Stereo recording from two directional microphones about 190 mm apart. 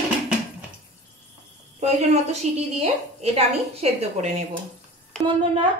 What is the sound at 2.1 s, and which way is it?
A woman's voice, 35° right (ahead or behind).